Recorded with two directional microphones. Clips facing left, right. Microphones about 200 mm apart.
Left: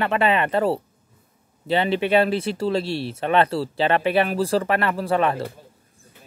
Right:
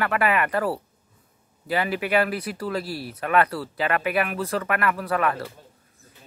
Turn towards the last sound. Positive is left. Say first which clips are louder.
# left 4 dB
turn(degrees=25)  # may be behind; listen again after turning